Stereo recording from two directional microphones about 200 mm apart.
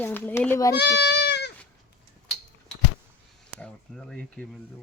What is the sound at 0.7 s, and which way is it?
Speech, 60° left (ahead or behind).